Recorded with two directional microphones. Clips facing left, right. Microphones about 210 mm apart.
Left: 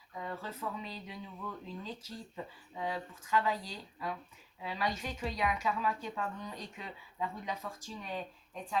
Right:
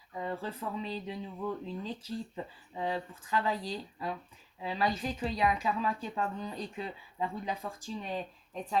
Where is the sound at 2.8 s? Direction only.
30° right (ahead or behind).